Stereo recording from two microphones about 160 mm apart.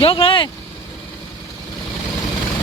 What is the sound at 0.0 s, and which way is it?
Vehicle, 35° left (ahead or behind).